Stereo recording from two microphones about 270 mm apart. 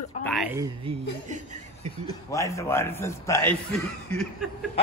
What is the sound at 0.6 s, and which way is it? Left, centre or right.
Speech, right.